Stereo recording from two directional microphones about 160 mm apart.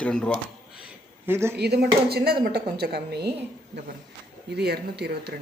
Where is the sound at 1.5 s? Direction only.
85° right.